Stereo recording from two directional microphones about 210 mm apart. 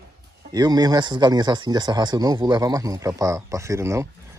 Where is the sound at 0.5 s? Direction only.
20° right (ahead or behind).